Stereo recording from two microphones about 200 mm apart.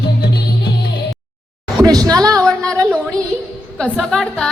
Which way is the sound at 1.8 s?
20° right (ahead or behind).